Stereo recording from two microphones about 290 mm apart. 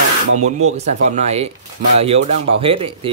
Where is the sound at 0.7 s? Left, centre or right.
Right.